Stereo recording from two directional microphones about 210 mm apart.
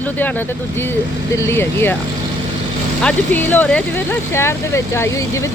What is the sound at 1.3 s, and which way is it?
Speech, 10° left (ahead or behind).